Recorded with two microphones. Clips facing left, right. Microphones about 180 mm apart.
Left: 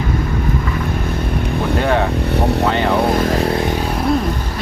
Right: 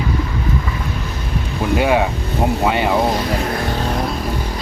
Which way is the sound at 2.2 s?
70° left (ahead or behind).